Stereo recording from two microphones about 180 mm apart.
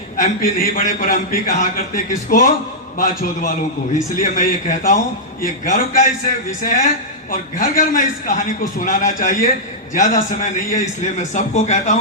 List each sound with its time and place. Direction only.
0.2 s a man's voice: 50° left (ahead or behind)